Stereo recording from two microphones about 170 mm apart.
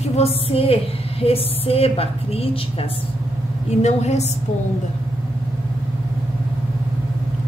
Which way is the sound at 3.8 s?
40° left (ahead or behind).